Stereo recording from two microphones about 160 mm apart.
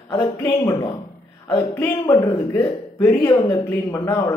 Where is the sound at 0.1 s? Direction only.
25° left (ahead or behind).